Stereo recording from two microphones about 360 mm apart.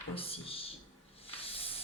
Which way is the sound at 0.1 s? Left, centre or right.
Centre.